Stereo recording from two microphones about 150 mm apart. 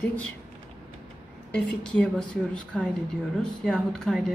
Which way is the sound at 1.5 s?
5° left (ahead or behind).